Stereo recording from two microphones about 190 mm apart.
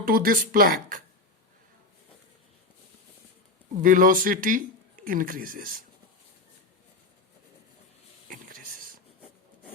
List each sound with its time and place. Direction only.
0.0 s speech: 50° right (ahead or behind)
3.8 s speech: 45° right (ahead or behind)
8.3 s a sound: 45° right (ahead or behind)